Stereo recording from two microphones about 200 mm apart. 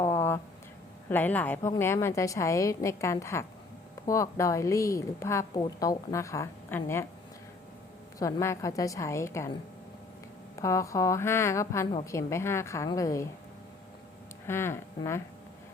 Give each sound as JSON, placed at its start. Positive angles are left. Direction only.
{"t": 0.0, "sound": "a sound", "side_deg": 15}
{"t": 1.1, "sound": "a woman's voice", "side_deg": 10}
{"t": 8.2, "sound": "a woman's voice", "side_deg": 15}
{"t": 14.4, "sound": "speech", "side_deg": 10}